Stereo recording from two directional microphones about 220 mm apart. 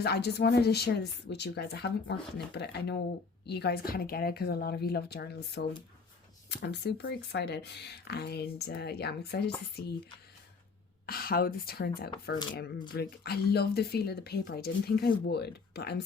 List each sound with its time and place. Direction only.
0.0 s speech: 45° left (ahead or behind)
11.0 s speech: 45° left (ahead or behind)